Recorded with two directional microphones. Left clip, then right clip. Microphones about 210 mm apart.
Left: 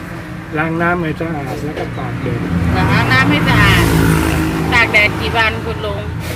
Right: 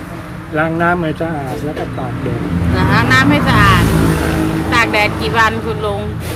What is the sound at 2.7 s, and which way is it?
Speech, 20° right (ahead or behind).